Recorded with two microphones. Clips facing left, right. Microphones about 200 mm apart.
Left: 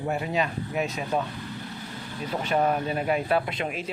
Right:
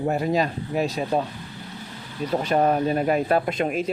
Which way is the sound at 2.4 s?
40° right (ahead or behind).